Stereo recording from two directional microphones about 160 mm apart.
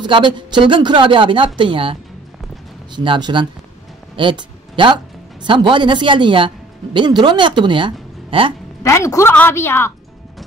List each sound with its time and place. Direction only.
0.0 s a woman's voice: 30° right (ahead or behind)
3.0 s speech: 30° right (ahead or behind)
8.8 s a woman's voice: 20° left (ahead or behind)